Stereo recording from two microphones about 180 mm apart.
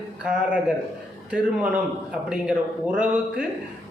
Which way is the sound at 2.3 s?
5° right (ahead or behind).